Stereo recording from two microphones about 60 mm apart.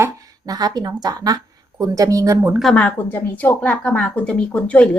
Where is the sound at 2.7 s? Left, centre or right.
Centre.